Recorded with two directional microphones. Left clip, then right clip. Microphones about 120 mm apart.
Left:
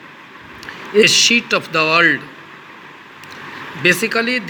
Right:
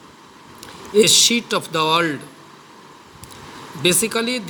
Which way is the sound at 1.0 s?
55° right (ahead or behind).